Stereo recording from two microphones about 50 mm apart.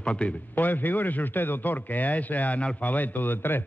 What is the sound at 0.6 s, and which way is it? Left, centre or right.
A man's voice, left.